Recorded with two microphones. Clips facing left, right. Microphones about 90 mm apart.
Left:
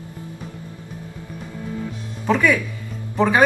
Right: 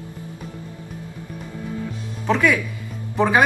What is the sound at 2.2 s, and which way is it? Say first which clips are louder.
Speech: left 1 dB; 5° left (ahead or behind).